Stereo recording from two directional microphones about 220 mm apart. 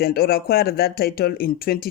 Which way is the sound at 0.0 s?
45° left (ahead or behind).